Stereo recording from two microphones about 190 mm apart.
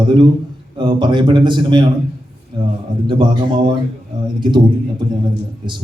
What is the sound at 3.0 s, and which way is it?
Speech, 25° right (ahead or behind).